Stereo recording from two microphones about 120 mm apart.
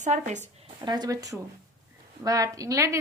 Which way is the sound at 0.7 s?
35° right (ahead or behind).